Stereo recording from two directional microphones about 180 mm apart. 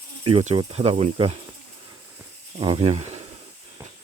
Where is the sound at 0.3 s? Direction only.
35° right (ahead or behind).